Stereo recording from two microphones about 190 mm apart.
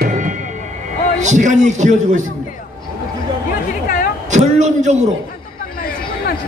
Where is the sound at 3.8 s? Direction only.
50° left (ahead or behind).